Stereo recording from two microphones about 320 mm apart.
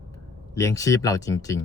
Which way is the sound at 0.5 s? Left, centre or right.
Centre.